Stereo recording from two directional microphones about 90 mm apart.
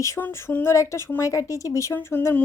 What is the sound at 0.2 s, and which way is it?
Speech, 25° left (ahead or behind).